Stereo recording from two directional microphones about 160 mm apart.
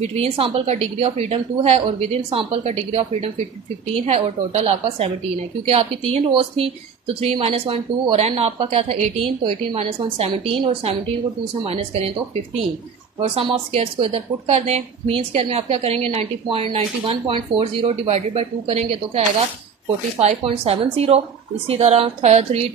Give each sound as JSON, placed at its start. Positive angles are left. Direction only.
{"t": 0.1, "sound": "speech", "side_deg": -40}
{"t": 13.2, "sound": "speech", "side_deg": -35}